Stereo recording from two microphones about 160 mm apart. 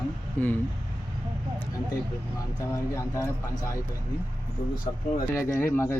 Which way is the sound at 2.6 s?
20° left (ahead or behind).